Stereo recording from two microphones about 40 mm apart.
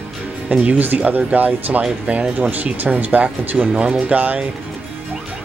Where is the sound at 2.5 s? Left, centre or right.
Right.